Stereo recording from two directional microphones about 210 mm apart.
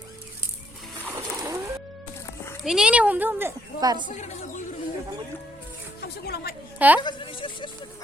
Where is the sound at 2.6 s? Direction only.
5° right (ahead or behind).